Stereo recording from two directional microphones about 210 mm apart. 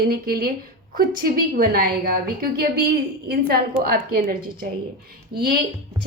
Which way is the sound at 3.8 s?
45° right (ahead or behind).